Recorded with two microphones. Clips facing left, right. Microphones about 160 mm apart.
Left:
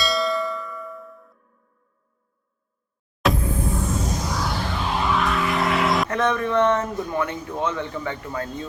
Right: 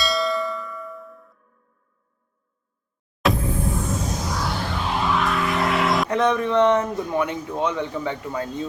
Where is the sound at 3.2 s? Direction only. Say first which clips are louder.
Even; centre (ahead or behind).